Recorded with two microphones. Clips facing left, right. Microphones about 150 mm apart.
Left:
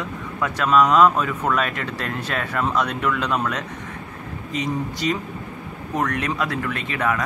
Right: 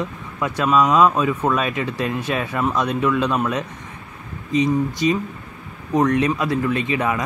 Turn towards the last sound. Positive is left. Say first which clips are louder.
# right 3 dB
turn(degrees=-15)  # may be behind; listen again after turning